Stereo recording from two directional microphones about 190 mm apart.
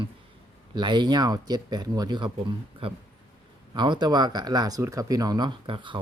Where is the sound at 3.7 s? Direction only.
25° right (ahead or behind).